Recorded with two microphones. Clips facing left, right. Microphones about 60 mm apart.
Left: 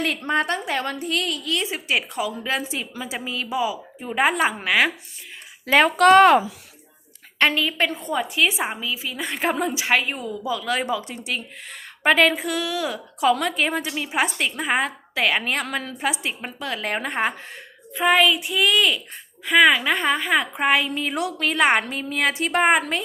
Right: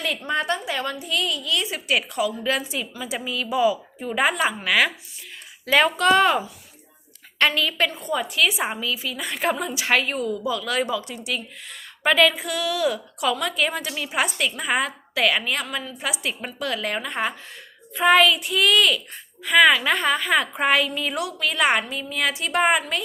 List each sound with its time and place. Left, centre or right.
0.3 s a woman's voice: left
1.6 s a woman's voice: left
3.6 s a woman's voice: centre
4.1 s a woman's voice: left
6.0 s speech: left
7.3 s a woman's voice: left
8.6 s a woman's voice: centre; by 9.8 s left
9.8 s a woman's voice: centre; by 17.3 s left
17.9 s a woman's voice: centre; by 22.8 s left